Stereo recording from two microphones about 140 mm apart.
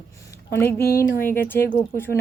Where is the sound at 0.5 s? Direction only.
20° left (ahead or behind).